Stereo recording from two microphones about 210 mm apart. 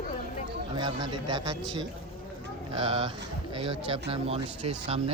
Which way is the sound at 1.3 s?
20° right (ahead or behind).